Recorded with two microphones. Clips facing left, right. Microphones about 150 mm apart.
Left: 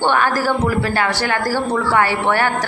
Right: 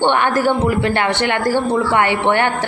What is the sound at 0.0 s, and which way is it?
A woman's voice, 20° right (ahead or behind).